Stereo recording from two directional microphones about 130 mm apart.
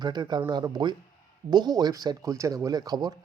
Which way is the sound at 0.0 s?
35° right (ahead or behind).